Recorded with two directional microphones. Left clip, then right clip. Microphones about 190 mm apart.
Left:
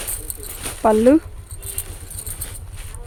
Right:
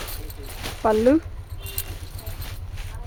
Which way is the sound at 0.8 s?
45° left (ahead or behind).